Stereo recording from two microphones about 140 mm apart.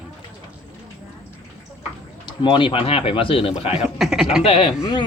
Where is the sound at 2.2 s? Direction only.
35° left (ahead or behind).